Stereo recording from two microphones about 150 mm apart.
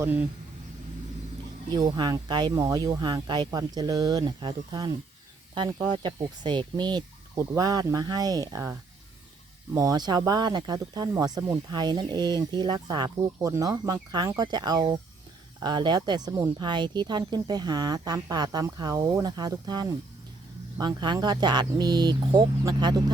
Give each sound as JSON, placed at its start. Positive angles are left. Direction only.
{"t": 0.0, "sound": "speech", "side_deg": -10}
{"t": 1.7, "sound": "speech", "side_deg": -25}